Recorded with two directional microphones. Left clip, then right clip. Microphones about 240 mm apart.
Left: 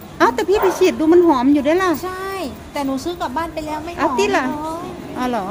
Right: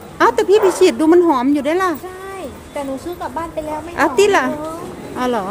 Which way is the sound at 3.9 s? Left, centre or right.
Centre.